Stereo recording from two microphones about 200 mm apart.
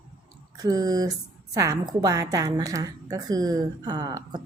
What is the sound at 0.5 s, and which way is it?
A woman's voice, 20° right (ahead or behind).